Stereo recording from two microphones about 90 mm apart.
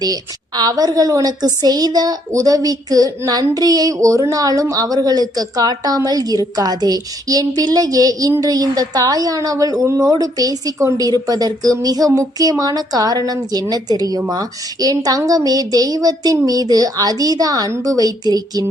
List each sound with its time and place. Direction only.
0.0 s a woman's voice: 45° right (ahead or behind)